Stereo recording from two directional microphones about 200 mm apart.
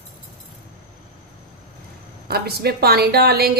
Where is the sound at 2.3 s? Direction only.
50° right (ahead or behind).